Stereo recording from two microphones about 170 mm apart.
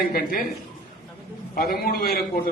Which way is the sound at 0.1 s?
60° left (ahead or behind).